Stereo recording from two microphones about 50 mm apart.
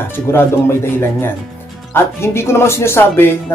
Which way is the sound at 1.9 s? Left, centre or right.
Left.